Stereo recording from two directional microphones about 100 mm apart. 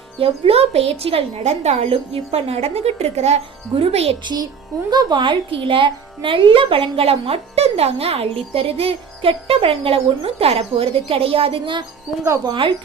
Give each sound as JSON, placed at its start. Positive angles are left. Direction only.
{"t": 0.2, "sound": "a woman's voice", "side_deg": -80}
{"t": 4.2, "sound": "speech", "side_deg": -50}
{"t": 12.1, "sound": "speech", "side_deg": -5}
{"t": 12.5, "sound": "speech", "side_deg": -55}